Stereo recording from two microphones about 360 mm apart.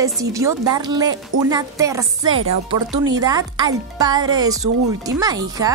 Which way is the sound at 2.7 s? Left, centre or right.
Centre.